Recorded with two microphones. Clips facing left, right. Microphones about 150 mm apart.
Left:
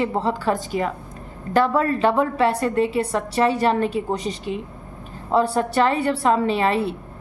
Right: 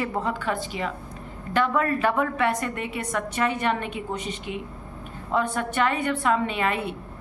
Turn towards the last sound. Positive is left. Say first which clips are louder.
# left 6 dB
turn(degrees=30)  # may be behind; listen again after turning